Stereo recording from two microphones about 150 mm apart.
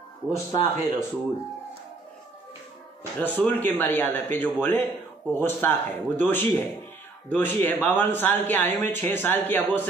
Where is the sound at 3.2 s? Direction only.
10° left (ahead or behind).